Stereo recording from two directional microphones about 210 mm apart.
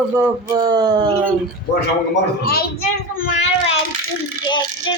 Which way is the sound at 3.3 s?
30° left (ahead or behind).